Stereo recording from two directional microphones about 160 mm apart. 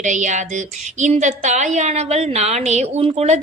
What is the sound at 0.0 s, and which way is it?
A woman's voice, 50° right (ahead or behind).